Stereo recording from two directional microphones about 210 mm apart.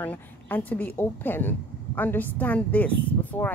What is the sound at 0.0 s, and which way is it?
Speech, 10° left (ahead or behind).